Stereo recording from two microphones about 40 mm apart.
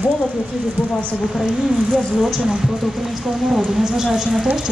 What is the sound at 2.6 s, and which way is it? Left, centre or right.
Speech, centre.